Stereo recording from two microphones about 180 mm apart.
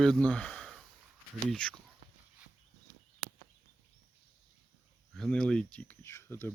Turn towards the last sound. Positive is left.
turn(degrees=15)  # may be behind; listen again after turning